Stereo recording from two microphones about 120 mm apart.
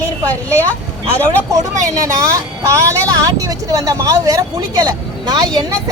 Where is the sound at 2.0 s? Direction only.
25° right (ahead or behind).